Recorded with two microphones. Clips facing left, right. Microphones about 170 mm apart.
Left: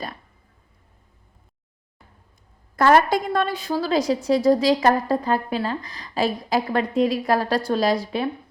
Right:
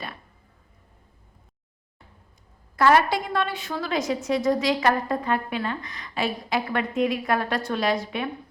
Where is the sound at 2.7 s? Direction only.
45° left (ahead or behind).